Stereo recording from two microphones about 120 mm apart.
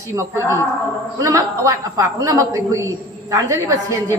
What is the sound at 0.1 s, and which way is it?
A man's voice, 25° right (ahead or behind).